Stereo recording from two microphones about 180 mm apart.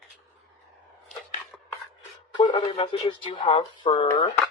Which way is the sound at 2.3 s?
25° left (ahead or behind).